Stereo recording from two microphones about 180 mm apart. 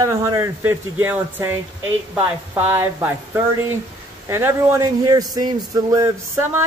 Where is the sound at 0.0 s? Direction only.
15° right (ahead or behind).